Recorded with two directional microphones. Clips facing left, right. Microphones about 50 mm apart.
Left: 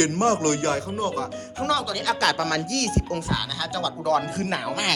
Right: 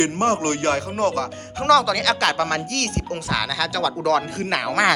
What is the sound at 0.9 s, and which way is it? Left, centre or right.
Speech, right.